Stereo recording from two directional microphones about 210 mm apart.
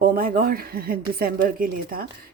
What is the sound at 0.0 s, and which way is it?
A woman's voice, 45° right (ahead or behind).